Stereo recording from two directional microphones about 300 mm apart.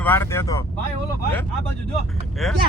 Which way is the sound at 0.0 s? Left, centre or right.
Centre.